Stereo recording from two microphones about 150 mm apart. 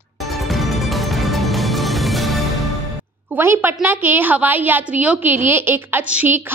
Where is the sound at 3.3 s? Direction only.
15° right (ahead or behind).